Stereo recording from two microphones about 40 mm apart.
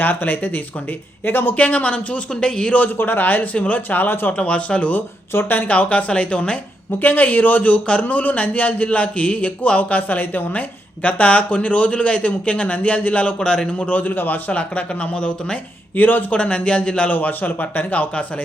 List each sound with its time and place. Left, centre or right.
0.0 s a man's voice: left
1.5 s a man's voice: left
2.3 s speech: left
3.0 s speech: left
3.2 s a man's voice: left
3.5 s a man's voice: left
3.8 s a man's voice: left
4.3 s a man's voice: left
7.0 s a man's voice: left
13.7 s a man's voice: left
14.5 s a man's voice: left
16.0 s a man's voice: left
16.3 s speech: left
17.1 s a man's voice: left